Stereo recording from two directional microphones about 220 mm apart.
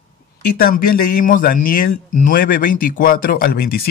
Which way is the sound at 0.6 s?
40° left (ahead or behind).